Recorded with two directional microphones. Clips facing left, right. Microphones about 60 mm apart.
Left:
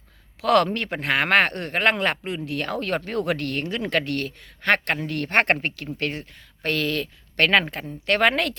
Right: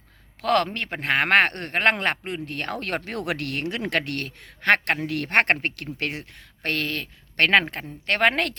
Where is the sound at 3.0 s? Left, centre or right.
Right.